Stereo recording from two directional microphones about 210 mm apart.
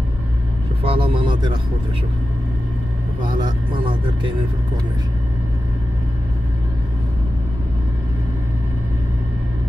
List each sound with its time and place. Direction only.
0.8 s vehicle: 25° right (ahead or behind)
3.2 s speech: 20° right (ahead or behind)